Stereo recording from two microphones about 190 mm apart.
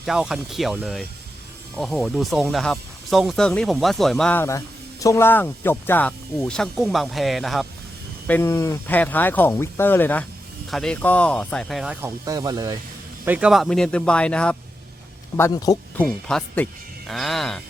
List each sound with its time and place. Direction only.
0.0 s speech: centre (ahead or behind)
8.3 s speech: 15° left (ahead or behind)
12.0 s speech: 20° right (ahead or behind)
13.2 s speech: 5° right (ahead or behind)
15.4 s speech: 15° left (ahead or behind)
16.0 s speech: 5° left (ahead or behind)